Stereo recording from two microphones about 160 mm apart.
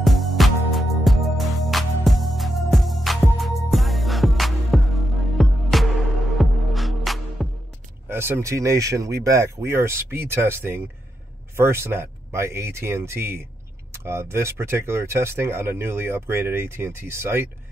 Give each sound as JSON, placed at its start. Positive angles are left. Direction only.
{"t": 0.0, "sound": "music", "side_deg": 0}
{"t": 8.1, "sound": "speech", "side_deg": -15}